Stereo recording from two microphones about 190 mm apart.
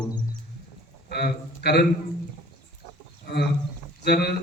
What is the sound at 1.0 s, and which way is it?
Speech, 55° left (ahead or behind).